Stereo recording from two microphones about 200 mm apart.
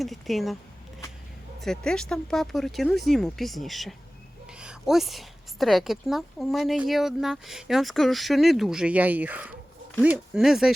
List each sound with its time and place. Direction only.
0.0 s a woman's voice: centre (ahead or behind)
1.6 s a woman's voice: 5° left (ahead or behind)